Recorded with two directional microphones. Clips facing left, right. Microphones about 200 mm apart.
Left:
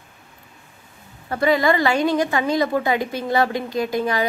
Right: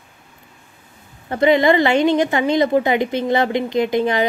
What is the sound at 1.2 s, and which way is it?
A woman's voice, 20° right (ahead or behind).